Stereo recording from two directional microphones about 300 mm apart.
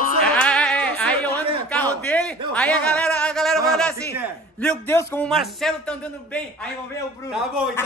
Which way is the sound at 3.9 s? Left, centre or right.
Centre.